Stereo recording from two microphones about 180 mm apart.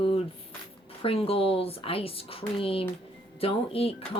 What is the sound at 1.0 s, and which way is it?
Speech, 30° left (ahead or behind).